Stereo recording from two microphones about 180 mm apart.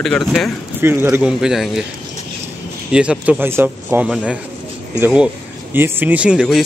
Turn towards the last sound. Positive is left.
turn(degrees=-5)  # may be behind; listen again after turning